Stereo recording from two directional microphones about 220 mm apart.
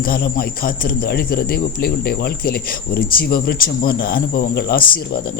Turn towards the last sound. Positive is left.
turn(degrees=45)  # may be behind; listen again after turning